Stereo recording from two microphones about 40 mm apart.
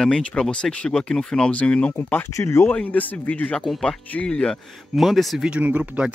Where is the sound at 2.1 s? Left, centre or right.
Left.